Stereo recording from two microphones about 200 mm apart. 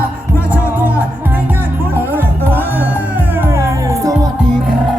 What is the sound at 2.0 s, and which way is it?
Music, 10° right (ahead or behind).